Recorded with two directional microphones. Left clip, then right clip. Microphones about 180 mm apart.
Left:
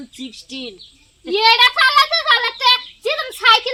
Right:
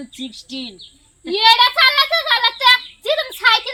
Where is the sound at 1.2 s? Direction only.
5° right (ahead or behind).